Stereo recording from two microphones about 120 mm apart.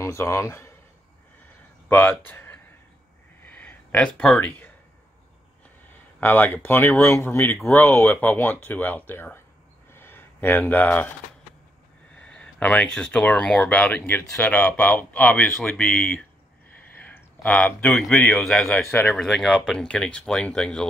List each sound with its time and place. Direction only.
0.0 s a man's voice: 25° left (ahead or behind)
1.9 s speech: 15° left (ahead or behind)
3.4 s a sound: 10° left (ahead or behind)
6.1 s a man's voice: 15° left (ahead or behind)
9.9 s a sound: 20° left (ahead or behind)
12.2 s speech: 10° left (ahead or behind)
16.9 s a sound: 15° left (ahead or behind)
17.8 s speech: 5° left (ahead or behind)
18.9 s speech: 15° left (ahead or behind)
19.1 s speech: 5° left (ahead or behind)